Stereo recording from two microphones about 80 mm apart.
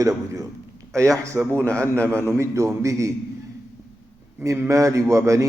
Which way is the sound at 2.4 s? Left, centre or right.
Right.